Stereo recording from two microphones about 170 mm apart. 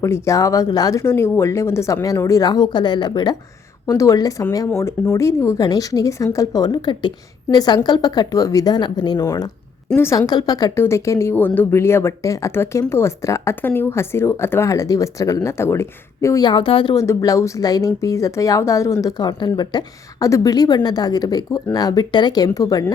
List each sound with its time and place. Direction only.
0.0 s speech: 15° left (ahead or behind)
16.9 s speech: 20° left (ahead or behind)